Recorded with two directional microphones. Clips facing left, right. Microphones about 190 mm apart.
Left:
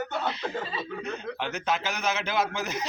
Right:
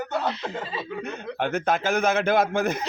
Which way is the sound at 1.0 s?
55° right (ahead or behind).